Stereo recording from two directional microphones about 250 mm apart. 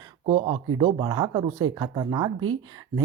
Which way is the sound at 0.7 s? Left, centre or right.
Centre.